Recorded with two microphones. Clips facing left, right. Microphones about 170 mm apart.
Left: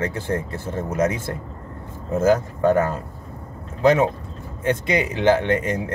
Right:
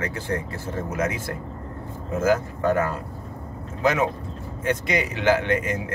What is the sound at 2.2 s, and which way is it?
Speech, 30° left (ahead or behind).